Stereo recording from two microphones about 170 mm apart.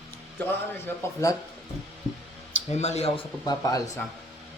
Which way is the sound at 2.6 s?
40° left (ahead or behind).